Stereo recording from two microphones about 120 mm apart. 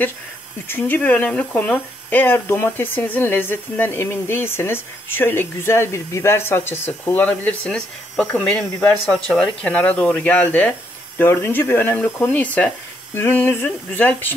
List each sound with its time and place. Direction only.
0.7 s speech: 15° left (ahead or behind)